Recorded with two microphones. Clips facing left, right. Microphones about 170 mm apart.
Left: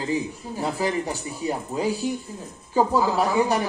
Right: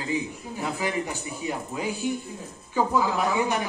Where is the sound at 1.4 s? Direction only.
35° left (ahead or behind).